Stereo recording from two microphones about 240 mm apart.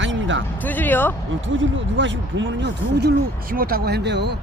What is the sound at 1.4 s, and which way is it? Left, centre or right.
Speech, right.